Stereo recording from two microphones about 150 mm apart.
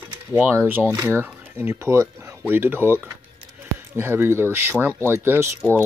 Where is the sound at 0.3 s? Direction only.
15° right (ahead or behind).